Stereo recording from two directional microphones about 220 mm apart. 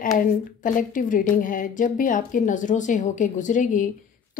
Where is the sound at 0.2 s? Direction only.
35° left (ahead or behind).